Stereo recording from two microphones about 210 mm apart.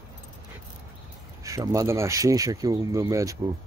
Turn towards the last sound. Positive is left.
turn(degrees=-15)  # may be behind; listen again after turning